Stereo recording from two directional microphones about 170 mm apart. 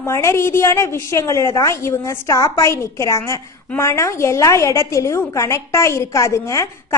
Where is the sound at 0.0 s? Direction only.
15° left (ahead or behind).